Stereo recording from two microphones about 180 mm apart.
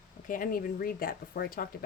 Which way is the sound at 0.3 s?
50° left (ahead or behind).